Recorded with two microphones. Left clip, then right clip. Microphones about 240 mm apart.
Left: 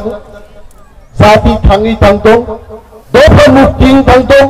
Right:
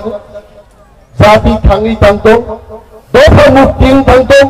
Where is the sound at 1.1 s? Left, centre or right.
Left.